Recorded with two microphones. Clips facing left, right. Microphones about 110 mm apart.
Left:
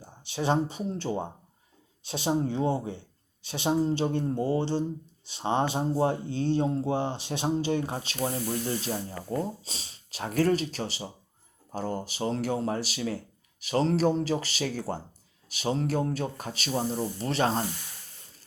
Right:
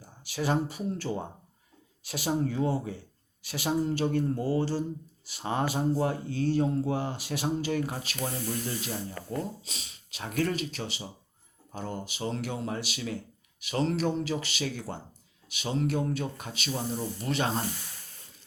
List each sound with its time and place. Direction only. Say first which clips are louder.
0.0 s speech: left 2 dB; 25° left (ahead or behind)